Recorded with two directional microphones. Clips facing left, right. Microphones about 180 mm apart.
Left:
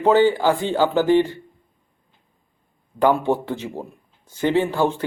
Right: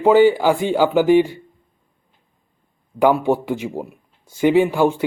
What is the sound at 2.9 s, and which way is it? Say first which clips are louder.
A man's voice: right 2 dB; 10° right (ahead or behind).